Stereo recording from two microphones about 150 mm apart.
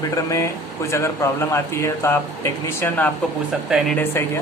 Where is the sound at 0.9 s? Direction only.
20° left (ahead or behind).